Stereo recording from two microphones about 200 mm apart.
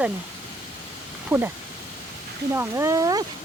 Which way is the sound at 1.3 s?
5° right (ahead or behind).